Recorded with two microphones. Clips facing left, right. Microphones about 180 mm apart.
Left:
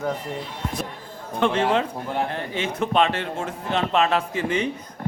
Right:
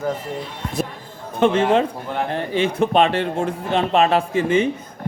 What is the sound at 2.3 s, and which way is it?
A man's voice, 30° right (ahead or behind).